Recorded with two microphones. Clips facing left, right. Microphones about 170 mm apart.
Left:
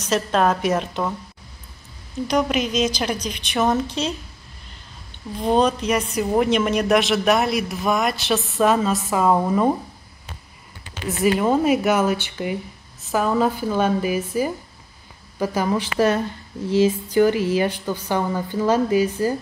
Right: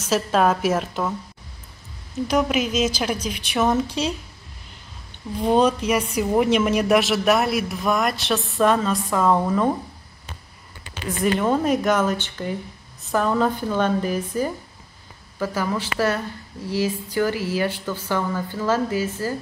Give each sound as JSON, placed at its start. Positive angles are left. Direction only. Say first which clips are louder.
{"t": 0.0, "sound": "a woman's voice", "louder": "even", "side_deg": -5}
{"t": 2.2, "sound": "a woman's voice", "louder": "even", "side_deg": -5}
{"t": 5.4, "sound": "a woman's voice", "louder": "even", "side_deg": -10}
{"t": 11.1, "sound": "speech", "louder": "left 2 dB", "side_deg": 5}